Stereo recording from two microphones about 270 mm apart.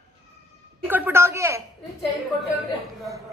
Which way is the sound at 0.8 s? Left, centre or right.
Centre.